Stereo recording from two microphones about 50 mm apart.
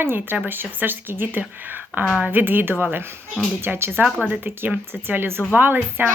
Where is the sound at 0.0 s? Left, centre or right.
Right.